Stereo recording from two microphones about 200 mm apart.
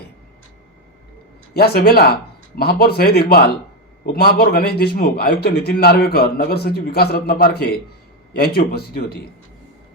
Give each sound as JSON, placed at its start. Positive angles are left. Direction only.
{"t": 1.5, "sound": "a man's voice", "side_deg": 50}